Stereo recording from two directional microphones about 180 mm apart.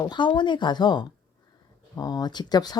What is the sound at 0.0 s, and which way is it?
Speech, 25° left (ahead or behind).